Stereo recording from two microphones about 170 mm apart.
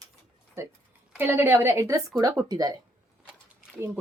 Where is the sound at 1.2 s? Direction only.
15° right (ahead or behind).